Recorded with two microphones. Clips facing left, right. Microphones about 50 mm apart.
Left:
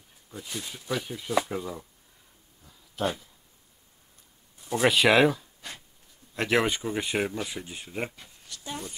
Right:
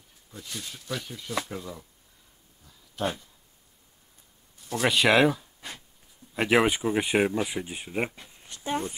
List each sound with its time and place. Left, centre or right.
0.3 s speech: centre
3.0 s speech: centre
4.6 s speech: centre; by 8.9 s right